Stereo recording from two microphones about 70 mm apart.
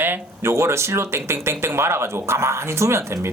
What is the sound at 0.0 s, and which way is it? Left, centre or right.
A man's voice, right.